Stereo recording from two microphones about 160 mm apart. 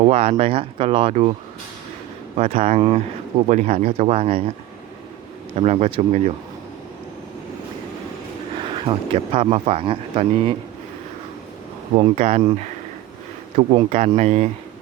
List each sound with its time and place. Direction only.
0.0 s speech: 40° right (ahead or behind)
2.4 s speech: 40° right (ahead or behind)
3.5 s speech: 50° right (ahead or behind)
5.5 s speech: 40° right (ahead or behind)
8.6 s speech: 35° right (ahead or behind)
11.9 s speech: 40° right (ahead or behind)
13.6 s speech: 35° right (ahead or behind)